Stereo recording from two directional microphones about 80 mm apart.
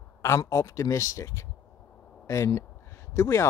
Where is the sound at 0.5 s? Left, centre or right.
Left.